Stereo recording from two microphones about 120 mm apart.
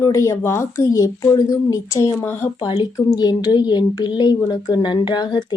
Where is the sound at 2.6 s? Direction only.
45° left (ahead or behind).